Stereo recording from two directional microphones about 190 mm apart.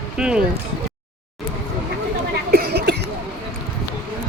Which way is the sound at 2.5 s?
60° right (ahead or behind).